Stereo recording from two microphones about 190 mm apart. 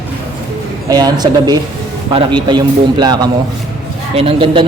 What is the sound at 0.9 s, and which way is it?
A man's voice, 20° right (ahead or behind).